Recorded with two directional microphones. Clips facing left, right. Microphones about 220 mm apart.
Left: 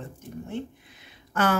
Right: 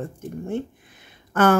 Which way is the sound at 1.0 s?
50° right (ahead or behind).